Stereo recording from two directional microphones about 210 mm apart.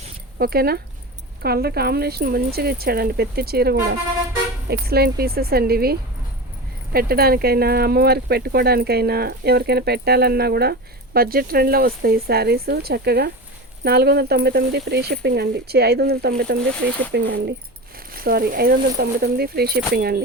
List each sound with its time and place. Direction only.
0.3 s speech: 45° right (ahead or behind)